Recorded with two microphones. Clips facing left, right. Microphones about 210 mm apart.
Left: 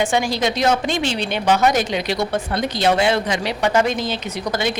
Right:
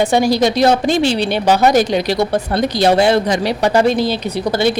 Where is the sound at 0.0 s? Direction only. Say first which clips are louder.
Right 6 dB; 40° right (ahead or behind).